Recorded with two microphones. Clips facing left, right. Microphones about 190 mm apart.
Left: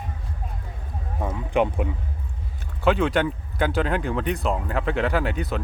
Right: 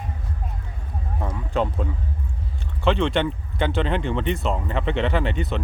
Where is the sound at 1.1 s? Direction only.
10° left (ahead or behind).